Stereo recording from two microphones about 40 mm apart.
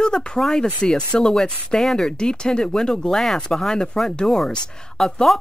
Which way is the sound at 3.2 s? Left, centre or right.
Centre.